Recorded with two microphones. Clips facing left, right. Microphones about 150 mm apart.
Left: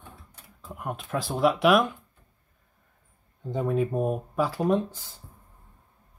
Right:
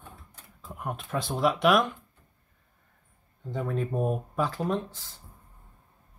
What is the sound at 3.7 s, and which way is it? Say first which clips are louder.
Speech: left 2 dB; 5° left (ahead or behind).